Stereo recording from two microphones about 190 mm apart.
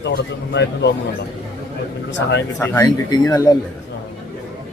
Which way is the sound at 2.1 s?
70° left (ahead or behind).